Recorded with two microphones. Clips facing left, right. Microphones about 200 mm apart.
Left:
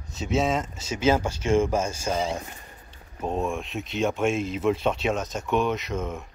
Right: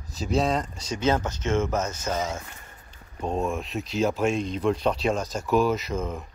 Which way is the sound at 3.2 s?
Centre (ahead or behind).